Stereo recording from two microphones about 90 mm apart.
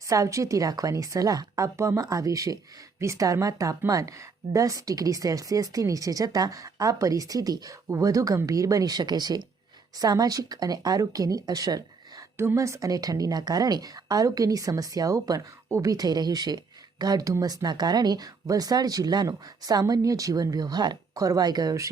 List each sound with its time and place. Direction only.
0.1 s a woman's voice: 35° right (ahead or behind)
12.4 s a woman's voice: 30° right (ahead or behind)